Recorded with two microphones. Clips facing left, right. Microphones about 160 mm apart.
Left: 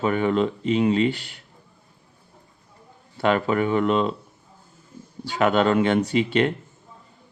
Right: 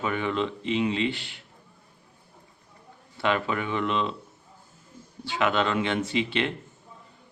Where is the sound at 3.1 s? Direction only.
45° left (ahead or behind).